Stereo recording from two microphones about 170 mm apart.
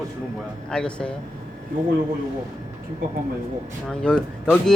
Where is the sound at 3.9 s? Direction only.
5° left (ahead or behind).